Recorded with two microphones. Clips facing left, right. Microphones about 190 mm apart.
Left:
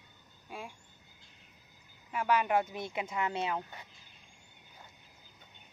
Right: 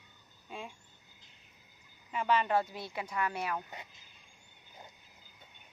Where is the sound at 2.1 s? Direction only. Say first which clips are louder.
Left 1 dB; 10° left (ahead or behind).